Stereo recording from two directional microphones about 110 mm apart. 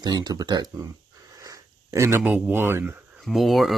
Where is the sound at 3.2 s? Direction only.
Centre (ahead or behind).